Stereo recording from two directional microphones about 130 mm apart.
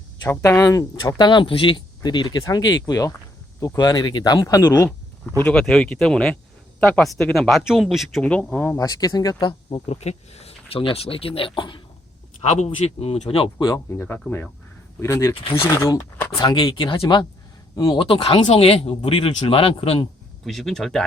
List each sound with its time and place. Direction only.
0.3 s speech: 20° left (ahead or behind)
5.4 s speech: 10° left (ahead or behind)
8.8 s speech: 30° left (ahead or behind)
12.4 s speech: 60° left (ahead or behind)
13.7 s speech: 25° left (ahead or behind)
18.1 s speech: 45° left (ahead or behind)
20.4 s speech: 5° left (ahead or behind)